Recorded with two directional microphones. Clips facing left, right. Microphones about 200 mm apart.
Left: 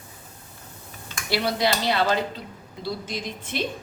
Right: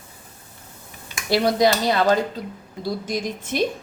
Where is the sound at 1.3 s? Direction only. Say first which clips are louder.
Right 6 dB; 45° right (ahead or behind).